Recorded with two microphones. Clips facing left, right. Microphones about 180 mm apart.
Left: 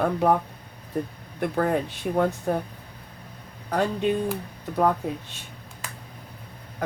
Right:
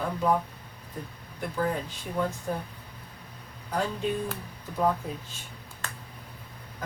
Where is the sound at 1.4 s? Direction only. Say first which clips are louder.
Left 6 dB; 65° left (ahead or behind).